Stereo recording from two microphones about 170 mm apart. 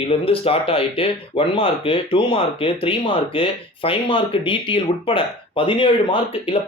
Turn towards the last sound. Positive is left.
turn(degrees=30)  # may be behind; listen again after turning